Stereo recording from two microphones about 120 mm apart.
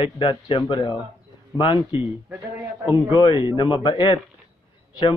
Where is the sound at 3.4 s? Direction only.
40° left (ahead or behind).